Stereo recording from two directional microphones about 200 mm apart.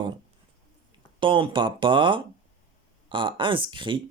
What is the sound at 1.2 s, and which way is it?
Speech, 25° right (ahead or behind).